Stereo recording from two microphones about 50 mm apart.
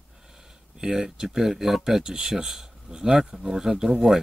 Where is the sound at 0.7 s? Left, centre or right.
Centre.